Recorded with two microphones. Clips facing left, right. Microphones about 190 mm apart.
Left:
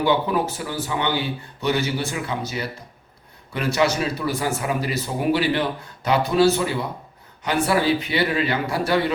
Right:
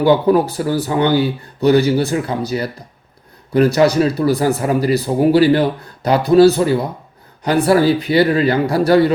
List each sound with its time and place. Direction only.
0.0 s speech: 40° right (ahead or behind)